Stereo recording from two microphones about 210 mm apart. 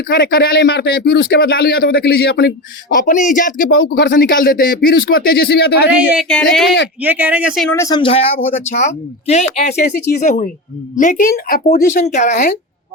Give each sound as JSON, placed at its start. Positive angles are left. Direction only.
{"t": 0.1, "sound": "speech", "side_deg": 50}
{"t": 2.9, "sound": "speech", "side_deg": 40}
{"t": 3.7, "sound": "speech", "side_deg": 55}
{"t": 6.0, "sound": "speech", "side_deg": 0}
{"t": 7.7, "sound": "speech", "side_deg": 15}